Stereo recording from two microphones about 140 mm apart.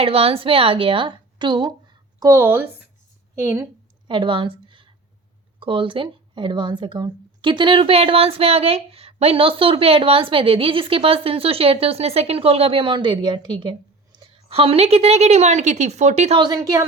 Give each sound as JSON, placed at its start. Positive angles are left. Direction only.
{"t": 0.0, "sound": "speech", "side_deg": -45}
{"t": 2.1, "sound": "a sound", "side_deg": -25}
{"t": 2.4, "sound": "a woman's voice", "side_deg": -15}
{"t": 4.1, "sound": "speech", "side_deg": -35}
{"t": 14.3, "sound": "a woman's voice", "side_deg": -45}
{"t": 16.4, "sound": "a woman's voice", "side_deg": -25}